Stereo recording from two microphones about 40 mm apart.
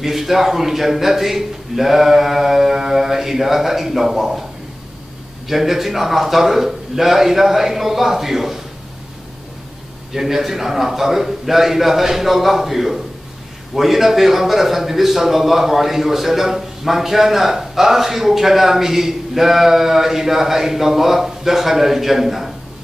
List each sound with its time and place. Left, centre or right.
0.0 s speech: centre
5.5 s speech: centre
10.1 s speech: centre